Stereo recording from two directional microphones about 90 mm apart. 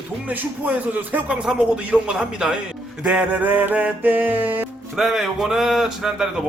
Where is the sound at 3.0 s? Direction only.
15° right (ahead or behind).